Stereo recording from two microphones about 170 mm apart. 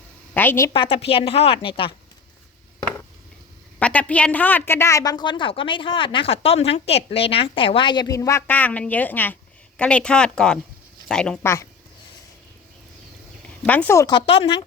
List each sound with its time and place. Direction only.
0.3 s a woman's voice: 15° left (ahead or behind)
0.7 s speech: 30° left (ahead or behind)
3.8 s a woman's voice: 10° left (ahead or behind)
11.4 s speech: 15° left (ahead or behind)
13.6 s speech: 10° left (ahead or behind)
14.2 s a woman's voice: 30° left (ahead or behind)